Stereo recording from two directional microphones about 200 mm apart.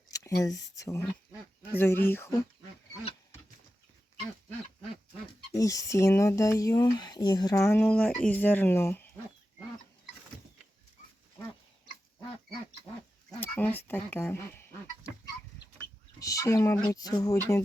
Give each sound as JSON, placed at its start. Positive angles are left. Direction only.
{"t": 0.1, "sound": "speech", "side_deg": 15}
{"t": 5.5, "sound": "speech", "side_deg": 15}
{"t": 7.8, "sound": "speech", "side_deg": 5}
{"t": 13.4, "sound": "a sound", "side_deg": 10}
{"t": 16.2, "sound": "speech", "side_deg": 15}